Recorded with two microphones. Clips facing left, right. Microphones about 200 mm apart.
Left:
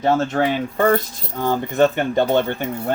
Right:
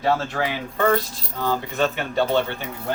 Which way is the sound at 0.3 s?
45° left (ahead or behind).